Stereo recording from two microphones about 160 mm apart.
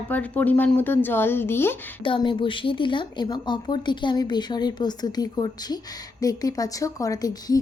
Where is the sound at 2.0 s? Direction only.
30° left (ahead or behind).